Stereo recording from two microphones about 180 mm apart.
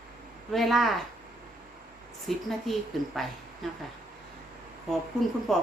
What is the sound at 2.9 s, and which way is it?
Speech, centre (ahead or behind).